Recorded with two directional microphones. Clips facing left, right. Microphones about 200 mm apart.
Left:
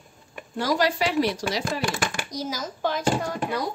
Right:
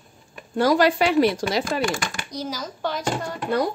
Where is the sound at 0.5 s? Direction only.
55° right (ahead or behind).